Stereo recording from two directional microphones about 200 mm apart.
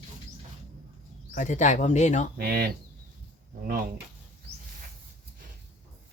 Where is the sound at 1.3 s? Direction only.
40° left (ahead or behind).